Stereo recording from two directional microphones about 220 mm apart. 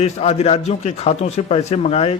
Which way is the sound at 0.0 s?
30° left (ahead or behind).